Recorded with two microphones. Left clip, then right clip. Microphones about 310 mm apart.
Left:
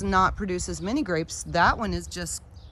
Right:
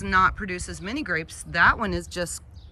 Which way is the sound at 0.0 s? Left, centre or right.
Centre.